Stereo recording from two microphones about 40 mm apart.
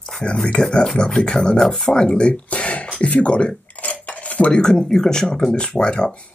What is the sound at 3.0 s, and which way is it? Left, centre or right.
Speech, left.